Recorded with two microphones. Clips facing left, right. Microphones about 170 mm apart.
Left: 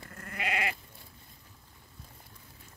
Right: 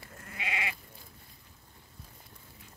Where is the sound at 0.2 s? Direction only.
60° left (ahead or behind).